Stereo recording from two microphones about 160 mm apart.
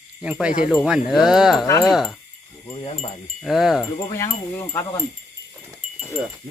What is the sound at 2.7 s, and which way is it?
Speech, 35° left (ahead or behind).